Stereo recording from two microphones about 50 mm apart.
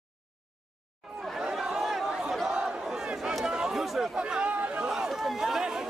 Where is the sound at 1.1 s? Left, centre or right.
Centre.